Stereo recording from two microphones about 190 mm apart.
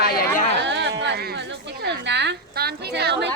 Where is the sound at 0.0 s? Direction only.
55° left (ahead or behind).